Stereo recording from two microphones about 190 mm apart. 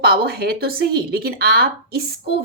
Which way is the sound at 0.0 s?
55° right (ahead or behind).